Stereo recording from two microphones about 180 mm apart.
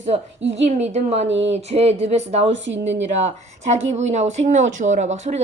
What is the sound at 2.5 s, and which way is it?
Speech, 85° right.